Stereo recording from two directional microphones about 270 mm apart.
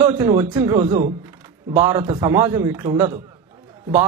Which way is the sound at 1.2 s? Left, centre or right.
Centre.